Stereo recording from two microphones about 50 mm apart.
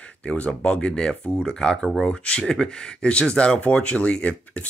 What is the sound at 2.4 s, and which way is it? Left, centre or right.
Speech, centre.